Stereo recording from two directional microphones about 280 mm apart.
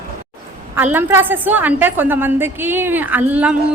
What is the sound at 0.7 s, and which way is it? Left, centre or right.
A woman's voice, centre.